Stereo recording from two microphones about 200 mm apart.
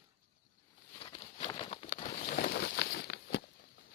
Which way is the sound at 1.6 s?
35° left (ahead or behind).